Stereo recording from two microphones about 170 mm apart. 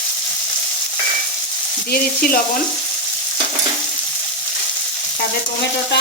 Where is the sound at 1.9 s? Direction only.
60° left (ahead or behind).